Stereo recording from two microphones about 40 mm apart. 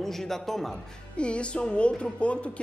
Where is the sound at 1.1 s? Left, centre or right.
Left.